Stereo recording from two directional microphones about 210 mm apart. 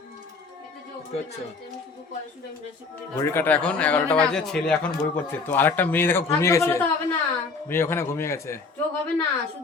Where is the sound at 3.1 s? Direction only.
10° left (ahead or behind).